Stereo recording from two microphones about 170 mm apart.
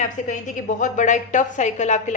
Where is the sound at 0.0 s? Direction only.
50° left (ahead or behind).